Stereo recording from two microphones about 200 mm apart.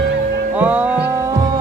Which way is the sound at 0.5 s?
5° right (ahead or behind).